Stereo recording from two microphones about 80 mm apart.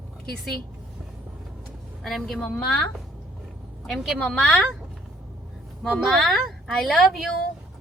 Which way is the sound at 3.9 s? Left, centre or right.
Centre.